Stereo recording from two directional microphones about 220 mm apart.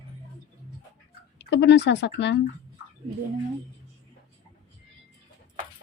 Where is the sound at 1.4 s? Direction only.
55° left (ahead or behind).